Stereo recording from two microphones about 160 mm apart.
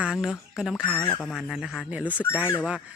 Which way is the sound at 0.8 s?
10° left (ahead or behind).